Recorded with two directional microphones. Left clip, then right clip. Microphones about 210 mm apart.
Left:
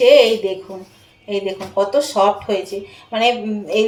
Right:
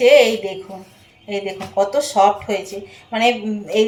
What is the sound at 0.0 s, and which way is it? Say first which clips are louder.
Speech: left 1 dB; 15° left (ahead or behind).